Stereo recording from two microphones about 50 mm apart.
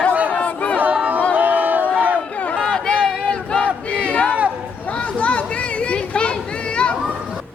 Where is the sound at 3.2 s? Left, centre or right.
Left.